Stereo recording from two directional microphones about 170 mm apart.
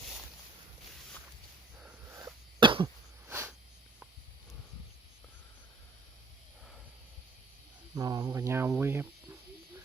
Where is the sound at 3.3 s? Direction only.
15° right (ahead or behind).